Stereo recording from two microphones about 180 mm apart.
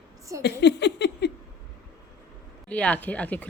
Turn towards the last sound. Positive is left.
turn(degrees=10)  # may be behind; listen again after turning